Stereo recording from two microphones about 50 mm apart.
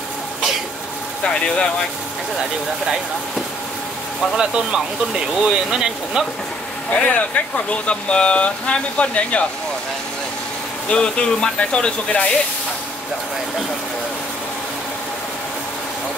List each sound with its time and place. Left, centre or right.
1.2 s speech: centre
4.4 s speech: centre
6.9 s speech: left
10.9 s speech: centre